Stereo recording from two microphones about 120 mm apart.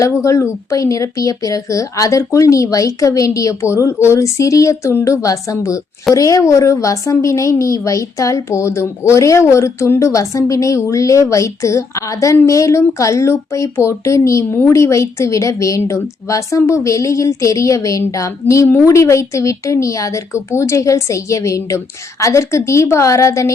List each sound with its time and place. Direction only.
0.0 s a woman's voice: 25° left (ahead or behind)